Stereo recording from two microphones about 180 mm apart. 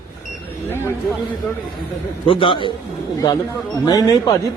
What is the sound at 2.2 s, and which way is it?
Speech, 30° left (ahead or behind).